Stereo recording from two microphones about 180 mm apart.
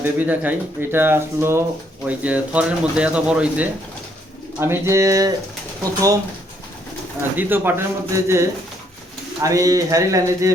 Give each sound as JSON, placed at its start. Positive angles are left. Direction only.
{"t": 0.0, "sound": "speech", "side_deg": -10}
{"t": 7.3, "sound": "speech", "side_deg": -10}